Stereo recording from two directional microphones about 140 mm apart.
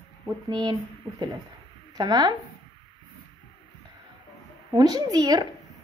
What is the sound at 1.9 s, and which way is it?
Speech, 30° right (ahead or behind).